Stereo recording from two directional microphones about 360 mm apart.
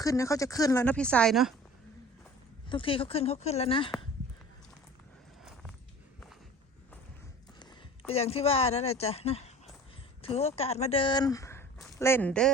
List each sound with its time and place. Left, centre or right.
0.0 s a woman's voice: centre
2.6 s a woman's voice: centre
7.6 s speech: centre